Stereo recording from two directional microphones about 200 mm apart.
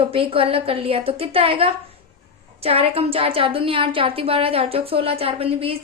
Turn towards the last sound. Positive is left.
turn(degrees=-30)  # may be behind; listen again after turning